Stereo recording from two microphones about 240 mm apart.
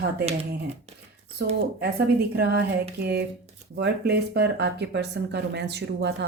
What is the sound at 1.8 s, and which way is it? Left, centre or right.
A woman's voice, right.